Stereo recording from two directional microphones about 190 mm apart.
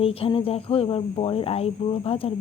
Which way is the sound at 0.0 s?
30° left (ahead or behind).